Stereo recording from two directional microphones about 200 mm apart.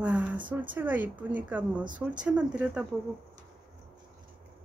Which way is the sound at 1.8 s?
40° right (ahead or behind).